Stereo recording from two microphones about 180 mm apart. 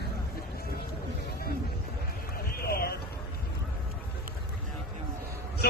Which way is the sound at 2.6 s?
60° left (ahead or behind).